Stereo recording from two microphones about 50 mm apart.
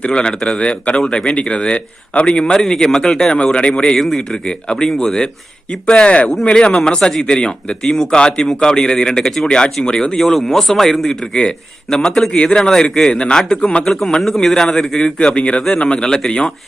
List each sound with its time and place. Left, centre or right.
0.0 s a man's voice: centre
3.3 s speech: left
3.9 s speech: centre
4.4 s a man's voice: centre